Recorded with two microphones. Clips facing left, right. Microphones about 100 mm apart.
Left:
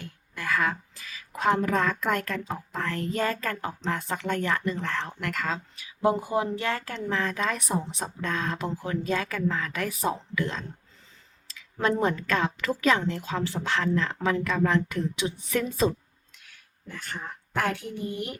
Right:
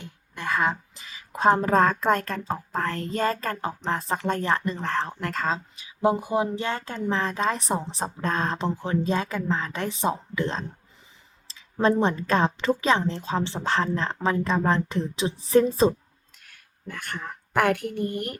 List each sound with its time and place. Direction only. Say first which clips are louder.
0.0 s a woman's voice: right 2 dB; 25° right (ahead or behind)
16.4 s a woman's voice: right 6 dB; 55° right (ahead or behind)